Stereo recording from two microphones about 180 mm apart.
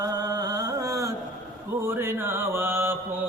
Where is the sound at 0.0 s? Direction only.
20° right (ahead or behind).